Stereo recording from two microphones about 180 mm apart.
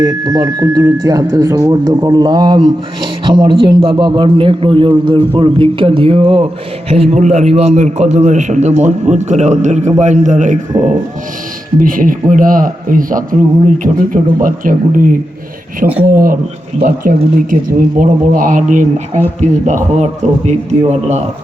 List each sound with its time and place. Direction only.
0.0 s a man's voice: 20° right (ahead or behind); by 13.2 s 50° right (ahead or behind)
14.4 s a man's voice: 50° right (ahead or behind)